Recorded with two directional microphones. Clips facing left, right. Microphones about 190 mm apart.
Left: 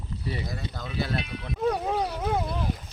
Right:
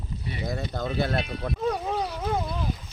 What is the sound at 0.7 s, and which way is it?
Speech, 50° right (ahead or behind).